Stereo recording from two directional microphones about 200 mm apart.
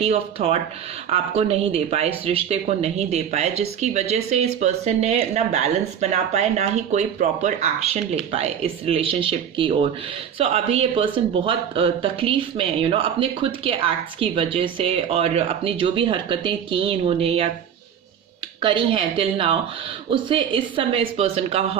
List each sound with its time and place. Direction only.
0.0 s speech: 30° right (ahead or behind)
18.6 s speech: 25° right (ahead or behind)